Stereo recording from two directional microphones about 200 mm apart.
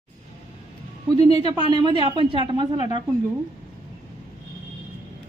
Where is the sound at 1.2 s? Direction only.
30° left (ahead or behind).